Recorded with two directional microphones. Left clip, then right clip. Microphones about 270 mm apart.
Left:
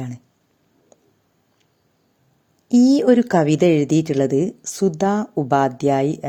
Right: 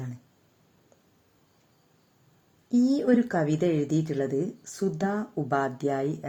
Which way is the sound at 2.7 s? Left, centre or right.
Left.